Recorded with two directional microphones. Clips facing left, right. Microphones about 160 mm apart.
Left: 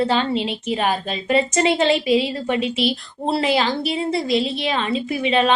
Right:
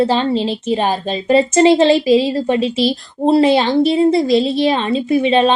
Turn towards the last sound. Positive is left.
turn(degrees=-30)  # may be behind; listen again after turning